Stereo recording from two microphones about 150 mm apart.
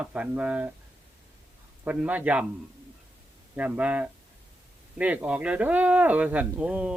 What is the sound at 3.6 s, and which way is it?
Speech, 10° right (ahead or behind).